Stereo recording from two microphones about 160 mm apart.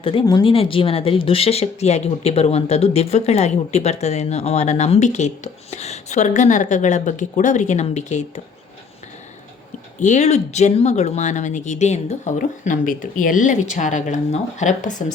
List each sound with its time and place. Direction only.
0.0 s speech: 30° left (ahead or behind)
10.0 s speech: 45° left (ahead or behind)